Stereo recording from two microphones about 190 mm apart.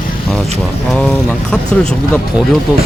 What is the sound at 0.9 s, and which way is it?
Speech, 5° left (ahead or behind).